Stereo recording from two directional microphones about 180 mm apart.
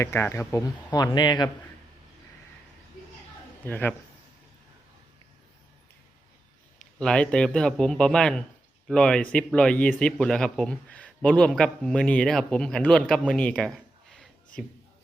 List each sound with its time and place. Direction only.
0.0 s speech: 15° left (ahead or behind)
3.6 s speech: 10° left (ahead or behind)
7.0 s speech: 5° left (ahead or behind)